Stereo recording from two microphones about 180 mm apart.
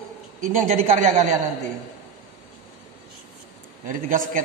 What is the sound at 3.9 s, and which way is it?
Speech, 50° right (ahead or behind).